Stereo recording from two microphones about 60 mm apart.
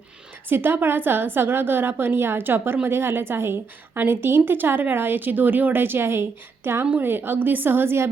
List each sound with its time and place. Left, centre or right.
0.4 s a woman's voice: right